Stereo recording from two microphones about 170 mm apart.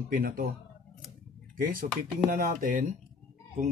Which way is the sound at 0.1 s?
60° right (ahead or behind).